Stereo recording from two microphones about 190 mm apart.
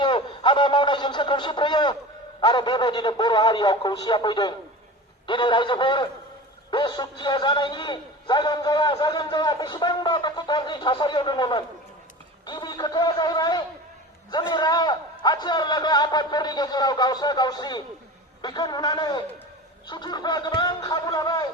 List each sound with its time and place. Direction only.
0.0 s a man's voice: 25° left (ahead or behind)